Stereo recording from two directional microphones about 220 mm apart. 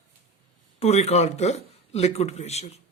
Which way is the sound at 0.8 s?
30° left (ahead or behind).